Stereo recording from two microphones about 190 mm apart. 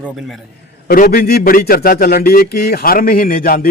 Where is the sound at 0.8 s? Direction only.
50° left (ahead or behind).